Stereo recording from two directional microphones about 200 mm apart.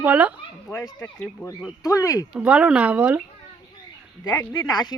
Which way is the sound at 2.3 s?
5° right (ahead or behind).